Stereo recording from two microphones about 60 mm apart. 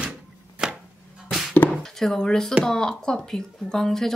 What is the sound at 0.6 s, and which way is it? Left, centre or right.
Chopping, centre.